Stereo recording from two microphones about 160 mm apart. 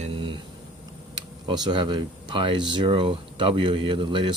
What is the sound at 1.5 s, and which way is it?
Speech, 30° right (ahead or behind).